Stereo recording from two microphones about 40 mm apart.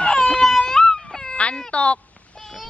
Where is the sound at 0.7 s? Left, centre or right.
Centre.